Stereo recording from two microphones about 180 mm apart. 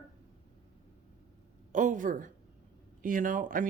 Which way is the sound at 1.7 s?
45° right (ahead or behind).